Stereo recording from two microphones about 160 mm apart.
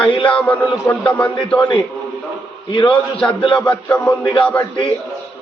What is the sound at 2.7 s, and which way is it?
Speech, 30° left (ahead or behind).